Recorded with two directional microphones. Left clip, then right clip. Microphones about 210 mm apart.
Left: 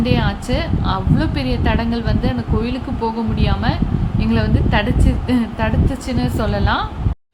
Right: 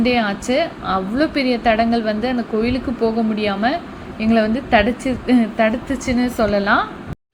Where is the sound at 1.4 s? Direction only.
25° left (ahead or behind).